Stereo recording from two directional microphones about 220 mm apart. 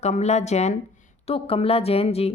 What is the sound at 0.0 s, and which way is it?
A woman's voice, 30° left (ahead or behind).